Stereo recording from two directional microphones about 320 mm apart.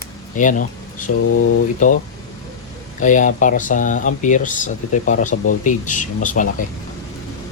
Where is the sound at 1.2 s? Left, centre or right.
Left.